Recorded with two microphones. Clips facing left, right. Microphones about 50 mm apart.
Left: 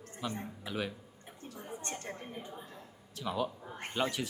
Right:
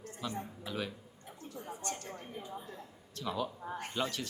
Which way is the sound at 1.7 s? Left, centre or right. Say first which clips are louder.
Even; left.